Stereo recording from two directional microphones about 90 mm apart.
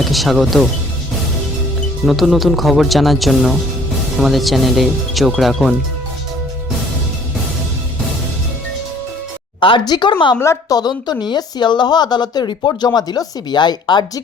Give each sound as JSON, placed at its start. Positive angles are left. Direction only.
{"t": 0.0, "sound": "speech", "side_deg": 0}
{"t": 2.0, "sound": "speech", "side_deg": 0}
{"t": 9.6, "sound": "a woman's voice", "side_deg": 70}
{"t": 9.8, "sound": "speech", "side_deg": 55}
{"t": 10.7, "sound": "a woman's voice", "side_deg": 50}